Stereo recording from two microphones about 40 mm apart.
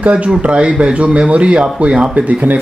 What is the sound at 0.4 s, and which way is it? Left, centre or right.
Speech, right.